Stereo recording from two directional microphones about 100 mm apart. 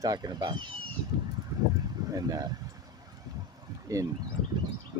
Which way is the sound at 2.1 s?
35° right (ahead or behind).